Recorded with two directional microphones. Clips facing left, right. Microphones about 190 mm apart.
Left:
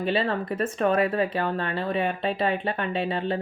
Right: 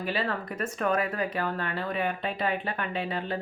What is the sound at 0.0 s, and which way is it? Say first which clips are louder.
Speech: left 5 dB; 25° left (ahead or behind).